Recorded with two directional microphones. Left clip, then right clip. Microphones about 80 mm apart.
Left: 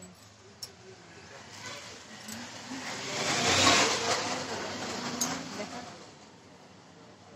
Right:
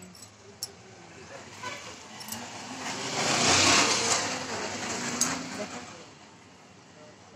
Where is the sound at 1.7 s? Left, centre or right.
Right.